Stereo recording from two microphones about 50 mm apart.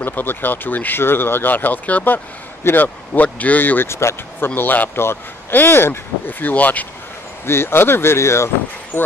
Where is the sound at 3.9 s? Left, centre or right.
Left.